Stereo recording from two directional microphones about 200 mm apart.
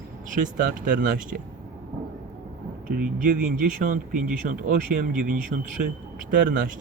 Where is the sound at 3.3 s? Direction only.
45° right (ahead or behind).